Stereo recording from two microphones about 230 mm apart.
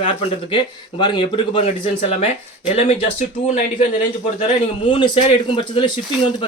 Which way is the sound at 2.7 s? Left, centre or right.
Left.